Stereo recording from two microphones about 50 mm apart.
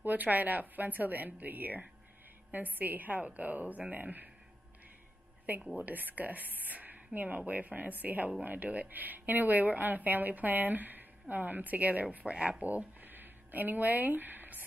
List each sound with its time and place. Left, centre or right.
0.0 s a woman's voice: right
5.8 s a woman's voice: right